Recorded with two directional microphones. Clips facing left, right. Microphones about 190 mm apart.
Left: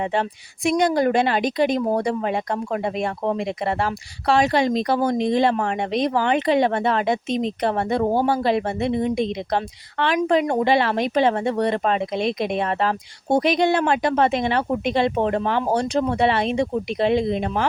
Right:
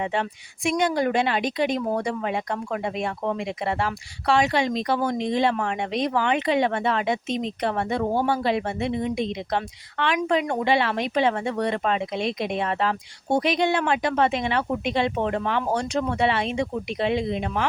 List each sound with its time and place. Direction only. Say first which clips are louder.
0.0 s a woman's voice: left 3 dB; 35° left (ahead or behind)